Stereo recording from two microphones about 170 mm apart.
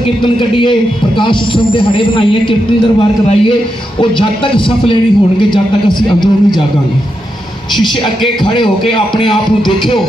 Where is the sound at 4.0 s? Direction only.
30° left (ahead or behind).